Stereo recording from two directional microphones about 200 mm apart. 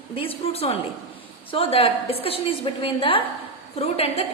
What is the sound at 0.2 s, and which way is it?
A woman's voice, 30° left (ahead or behind).